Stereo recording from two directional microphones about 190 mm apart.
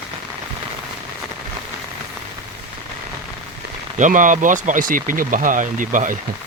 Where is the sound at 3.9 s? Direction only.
40° right (ahead or behind).